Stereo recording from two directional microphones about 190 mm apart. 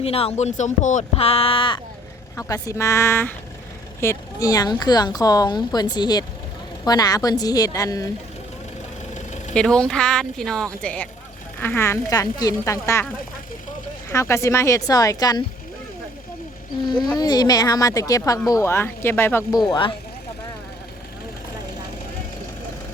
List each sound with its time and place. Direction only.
0.0 s a woman's voice: 30° left (ahead or behind)
9.1 s vehicle: 40° left (ahead or behind)
9.6 s a woman's voice: 5° left (ahead or behind)
14.1 s a woman's voice: 15° left (ahead or behind)
17.0 s speech: 20° left (ahead or behind)